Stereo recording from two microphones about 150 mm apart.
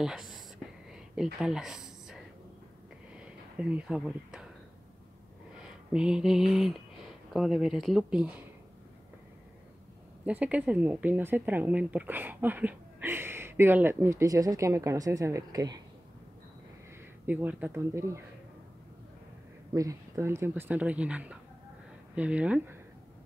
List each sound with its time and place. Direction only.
0.0 s speech: 5° right (ahead or behind)
3.2 s a sound: 5° right (ahead or behind)
5.5 s a sound: 5° right (ahead or behind)
7.3 s speech: centre (ahead or behind)
10.2 s a woman's voice: 10° right (ahead or behind); by 15.8 s 25° right (ahead or behind)
17.3 s a woman's voice: 10° right (ahead or behind)
19.7 s a woman's voice: 20° right (ahead or behind)